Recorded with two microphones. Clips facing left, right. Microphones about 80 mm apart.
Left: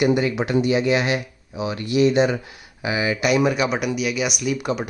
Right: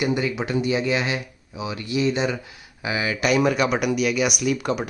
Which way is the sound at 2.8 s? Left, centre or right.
Left.